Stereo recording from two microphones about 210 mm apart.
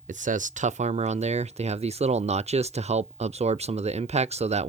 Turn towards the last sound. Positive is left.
turn(degrees=-30)  # may be behind; listen again after turning